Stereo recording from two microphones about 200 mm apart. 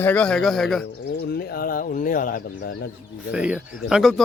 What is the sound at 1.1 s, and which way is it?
Speech, 50° left (ahead or behind).